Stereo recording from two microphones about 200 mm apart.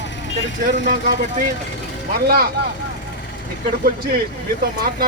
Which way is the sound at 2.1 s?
50° right (ahead or behind).